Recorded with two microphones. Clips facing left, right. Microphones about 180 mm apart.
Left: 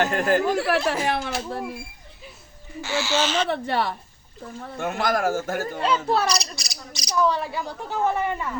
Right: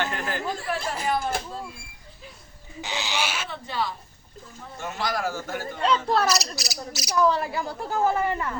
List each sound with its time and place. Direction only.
0.0 s chatter: 45° left (ahead or behind)
0.5 s speech: 75° left (ahead or behind)
2.8 s speech: 20° right (ahead or behind)
3.5 s a woman's voice: 65° left (ahead or behind); by 5.8 s 45° left (ahead or behind)
5.8 s speech: 5° left (ahead or behind)